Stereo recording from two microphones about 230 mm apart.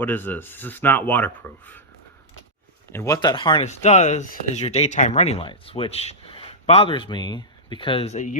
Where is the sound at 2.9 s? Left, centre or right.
Centre.